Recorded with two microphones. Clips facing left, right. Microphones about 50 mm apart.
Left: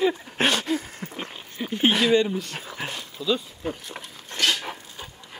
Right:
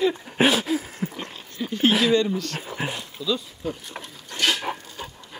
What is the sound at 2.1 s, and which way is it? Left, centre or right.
Speech, centre.